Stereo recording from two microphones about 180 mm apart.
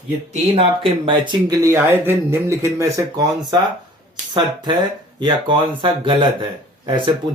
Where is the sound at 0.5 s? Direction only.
30° right (ahead or behind).